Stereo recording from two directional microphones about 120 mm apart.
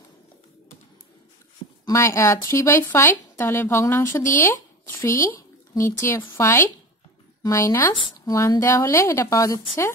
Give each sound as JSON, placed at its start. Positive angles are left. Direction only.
{"t": 1.9, "sound": "speech", "side_deg": 25}
{"t": 5.3, "sound": "speech", "side_deg": 20}